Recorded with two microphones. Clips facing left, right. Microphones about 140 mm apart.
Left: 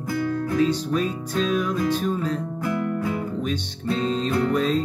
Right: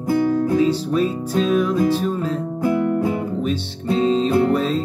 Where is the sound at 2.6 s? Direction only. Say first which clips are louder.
Right 8 dB; 30° right (ahead or behind).